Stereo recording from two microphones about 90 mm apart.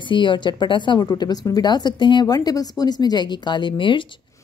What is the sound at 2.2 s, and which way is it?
Speech, 45° left (ahead or behind).